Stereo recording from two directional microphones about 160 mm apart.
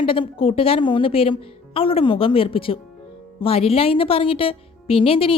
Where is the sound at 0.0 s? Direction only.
35° left (ahead or behind).